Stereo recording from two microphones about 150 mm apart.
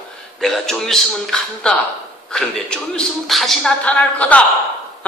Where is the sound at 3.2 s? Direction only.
Centre (ahead or behind).